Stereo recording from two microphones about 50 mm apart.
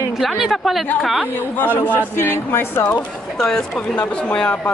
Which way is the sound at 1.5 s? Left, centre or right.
Left.